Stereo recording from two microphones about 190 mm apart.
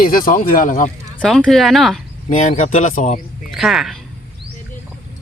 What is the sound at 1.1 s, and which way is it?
Speech, 5° left (ahead or behind).